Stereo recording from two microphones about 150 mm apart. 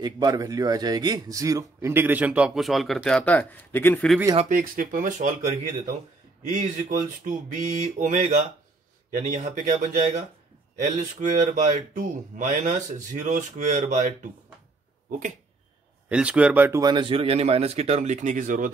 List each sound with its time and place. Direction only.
0.0 s speech: 25° right (ahead or behind); by 4.1 s 10° left (ahead or behind)
4.4 s speech: 60° right (ahead or behind)
6.5 s speech: 60° right (ahead or behind)
15.0 s a sound: 60° right (ahead or behind)
16.1 s speech: 10° right (ahead or behind)
16.8 s speech: 30° right (ahead or behind); by 18.7 s 60° right (ahead or behind)